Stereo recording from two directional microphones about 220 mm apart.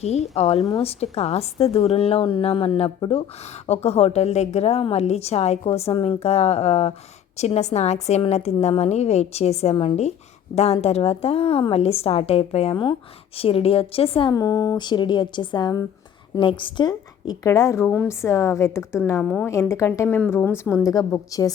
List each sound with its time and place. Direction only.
0.0 s a woman's voice: 30° left (ahead or behind)